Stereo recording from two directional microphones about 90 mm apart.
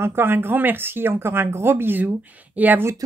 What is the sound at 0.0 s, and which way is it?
Speech, 25° right (ahead or behind).